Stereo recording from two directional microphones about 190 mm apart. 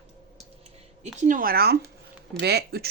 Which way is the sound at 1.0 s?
40° right (ahead or behind).